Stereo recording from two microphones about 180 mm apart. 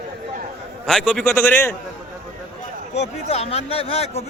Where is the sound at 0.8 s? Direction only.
5° left (ahead or behind).